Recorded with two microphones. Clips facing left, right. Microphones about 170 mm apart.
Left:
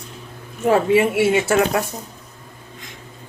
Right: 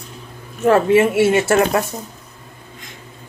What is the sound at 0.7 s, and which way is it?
Speech, 15° left (ahead or behind).